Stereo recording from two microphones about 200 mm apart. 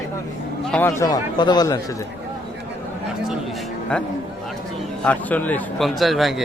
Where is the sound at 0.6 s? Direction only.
5° left (ahead or behind).